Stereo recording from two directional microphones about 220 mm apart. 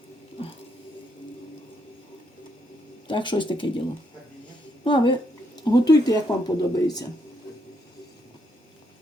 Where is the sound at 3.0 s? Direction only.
20° left (ahead or behind).